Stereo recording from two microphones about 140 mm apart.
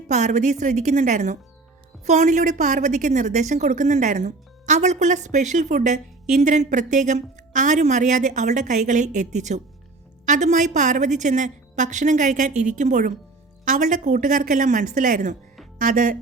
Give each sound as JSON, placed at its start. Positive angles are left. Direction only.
{"t": 0.1, "sound": "a woman's voice", "side_deg": -60}